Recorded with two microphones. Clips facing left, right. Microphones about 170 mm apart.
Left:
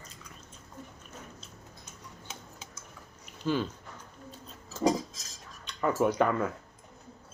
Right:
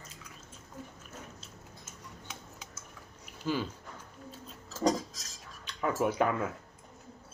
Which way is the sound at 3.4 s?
10° right (ahead or behind).